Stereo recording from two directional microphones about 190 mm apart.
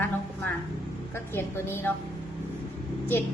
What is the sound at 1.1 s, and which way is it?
Speech, 10° left (ahead or behind).